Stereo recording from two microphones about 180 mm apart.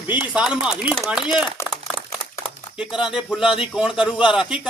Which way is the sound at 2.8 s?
5° right (ahead or behind).